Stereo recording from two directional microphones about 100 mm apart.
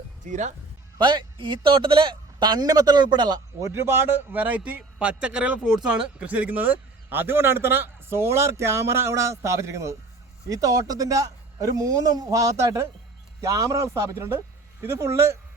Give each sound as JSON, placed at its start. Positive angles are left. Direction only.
{"t": 0.9, "sound": "speech", "side_deg": -50}
{"t": 3.7, "sound": "a man's voice", "side_deg": -25}